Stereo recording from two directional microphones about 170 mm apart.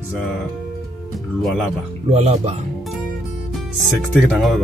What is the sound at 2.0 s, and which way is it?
Speech, 40° right (ahead or behind).